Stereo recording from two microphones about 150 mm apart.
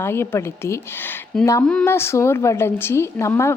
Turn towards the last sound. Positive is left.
turn(degrees=20)  # may be behind; listen again after turning